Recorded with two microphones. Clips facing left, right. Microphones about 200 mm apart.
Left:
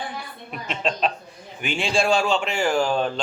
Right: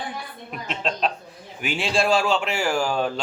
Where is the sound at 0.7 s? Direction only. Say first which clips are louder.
Left 1 dB; centre (ahead or behind).